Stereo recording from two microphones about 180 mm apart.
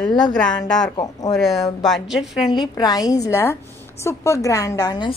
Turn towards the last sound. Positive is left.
turn(degrees=25)  # may be behind; listen again after turning